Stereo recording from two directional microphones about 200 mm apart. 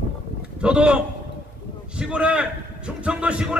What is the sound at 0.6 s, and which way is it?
A man's voice, 5° right (ahead or behind).